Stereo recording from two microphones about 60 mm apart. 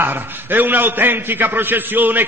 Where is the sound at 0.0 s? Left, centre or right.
Right.